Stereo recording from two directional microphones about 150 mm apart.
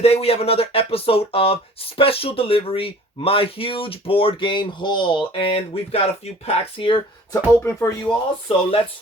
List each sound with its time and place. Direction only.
0.0 s speech: 40° left (ahead or behind)
7.6 s speech: 15° left (ahead or behind)
8.0 s speech: 40° left (ahead or behind)